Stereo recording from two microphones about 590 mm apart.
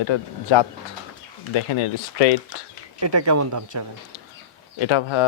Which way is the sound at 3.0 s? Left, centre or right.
Right.